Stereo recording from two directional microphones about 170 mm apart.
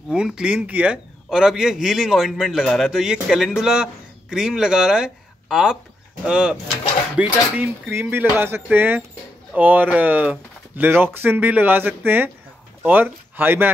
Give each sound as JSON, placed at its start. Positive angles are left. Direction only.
{"t": 0.1, "sound": "speech", "side_deg": -5}